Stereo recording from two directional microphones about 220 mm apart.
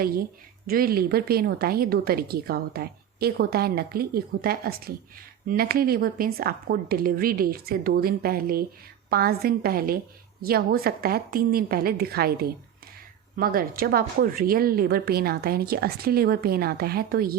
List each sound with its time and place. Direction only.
0.7 s a woman's voice: 45° right (ahead or behind)